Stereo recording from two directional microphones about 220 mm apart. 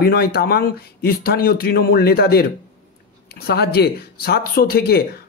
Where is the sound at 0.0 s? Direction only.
45° left (ahead or behind).